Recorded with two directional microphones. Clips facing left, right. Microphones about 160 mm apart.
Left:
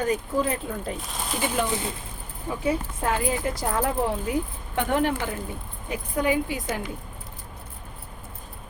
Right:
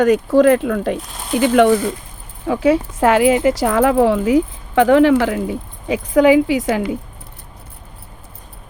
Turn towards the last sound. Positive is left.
turn(degrees=-80)